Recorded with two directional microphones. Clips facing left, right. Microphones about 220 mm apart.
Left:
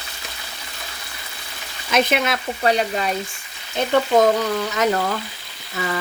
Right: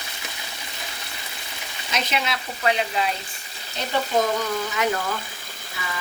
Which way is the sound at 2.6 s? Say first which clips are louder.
Left 3 dB; 40° left (ahead or behind).